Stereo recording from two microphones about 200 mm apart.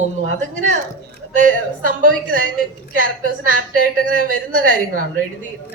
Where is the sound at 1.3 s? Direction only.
40° right (ahead or behind).